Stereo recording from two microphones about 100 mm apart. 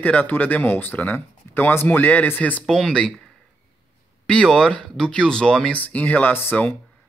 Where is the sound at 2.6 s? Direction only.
5° left (ahead or behind).